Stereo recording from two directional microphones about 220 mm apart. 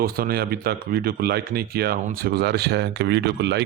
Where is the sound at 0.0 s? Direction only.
45° right (ahead or behind).